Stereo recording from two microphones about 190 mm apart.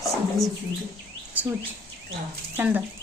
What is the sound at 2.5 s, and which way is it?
Speech, 10° right (ahead or behind).